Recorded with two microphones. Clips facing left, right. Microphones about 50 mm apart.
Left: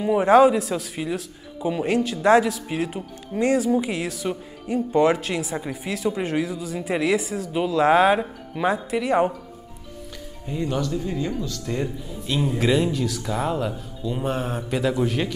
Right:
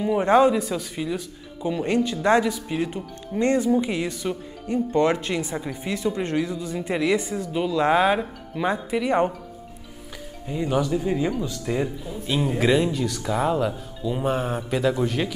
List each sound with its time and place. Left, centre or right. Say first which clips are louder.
0.0 s a man's voice: left 2 dB; centre
10.5 s speech: right 2 dB; centre
11.8 s a man's voice: right 1 dB; centre